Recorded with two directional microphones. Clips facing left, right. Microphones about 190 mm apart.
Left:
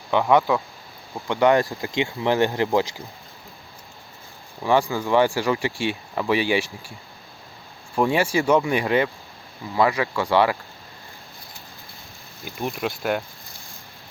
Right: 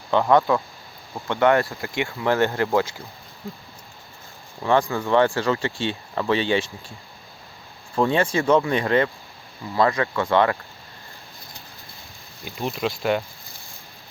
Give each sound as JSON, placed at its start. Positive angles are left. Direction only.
{"t": 0.1, "sound": "speech", "side_deg": 15}
{"t": 4.6, "sound": "speech", "side_deg": 10}
{"t": 7.9, "sound": "speech", "side_deg": 10}
{"t": 12.4, "sound": "speech", "side_deg": 0}